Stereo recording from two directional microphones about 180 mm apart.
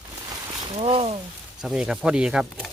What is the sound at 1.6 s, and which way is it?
Speech, 5° right (ahead or behind).